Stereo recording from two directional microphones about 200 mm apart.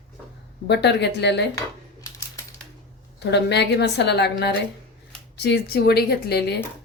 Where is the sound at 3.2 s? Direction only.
55° left (ahead or behind).